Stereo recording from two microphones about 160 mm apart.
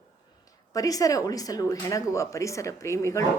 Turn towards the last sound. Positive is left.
turn(degrees=20)  # may be behind; listen again after turning